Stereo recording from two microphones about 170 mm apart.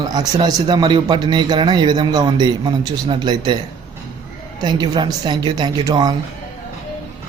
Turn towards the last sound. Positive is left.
turn(degrees=-25)  # may be behind; listen again after turning